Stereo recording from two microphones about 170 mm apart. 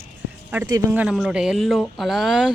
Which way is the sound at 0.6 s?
20° right (ahead or behind).